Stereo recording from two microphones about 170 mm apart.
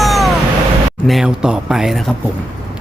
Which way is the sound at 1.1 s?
5° right (ahead or behind).